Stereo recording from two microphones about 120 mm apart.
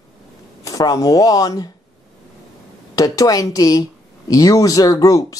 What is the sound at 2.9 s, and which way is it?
Speech, 30° left (ahead or behind).